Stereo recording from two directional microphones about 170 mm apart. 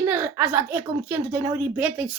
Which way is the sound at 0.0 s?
10° right (ahead or behind).